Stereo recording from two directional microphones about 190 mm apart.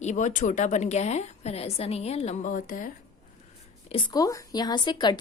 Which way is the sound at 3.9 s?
20° left (ahead or behind).